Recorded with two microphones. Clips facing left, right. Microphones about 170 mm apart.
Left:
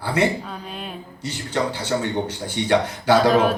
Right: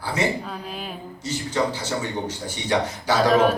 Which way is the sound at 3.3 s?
Centre (ahead or behind).